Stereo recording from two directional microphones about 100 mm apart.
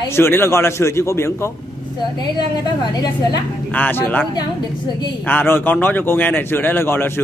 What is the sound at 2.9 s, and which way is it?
Speech, 40° left (ahead or behind).